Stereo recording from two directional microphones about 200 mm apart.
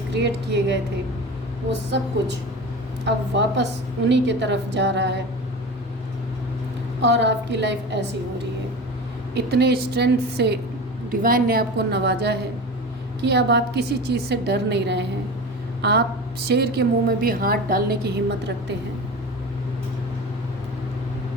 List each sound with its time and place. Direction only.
0.1 s a woman's voice: 60° right (ahead or behind)
3.0 s a woman's voice: 60° right (ahead or behind)
7.0 s a woman's voice: 60° right (ahead or behind)
9.3 s a woman's voice: 55° right (ahead or behind)
11.1 s a woman's voice: 45° right (ahead or behind)